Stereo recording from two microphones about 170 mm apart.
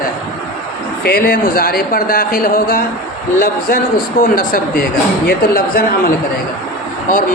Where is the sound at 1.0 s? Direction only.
60° left (ahead or behind).